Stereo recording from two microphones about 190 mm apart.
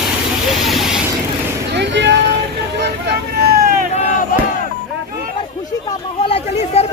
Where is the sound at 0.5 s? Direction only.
Centre (ahead or behind).